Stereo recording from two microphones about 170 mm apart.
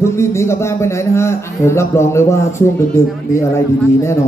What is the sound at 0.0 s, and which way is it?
Speech, 15° left (ahead or behind).